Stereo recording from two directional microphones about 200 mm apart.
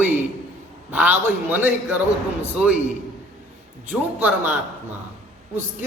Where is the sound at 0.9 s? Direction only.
10° right (ahead or behind).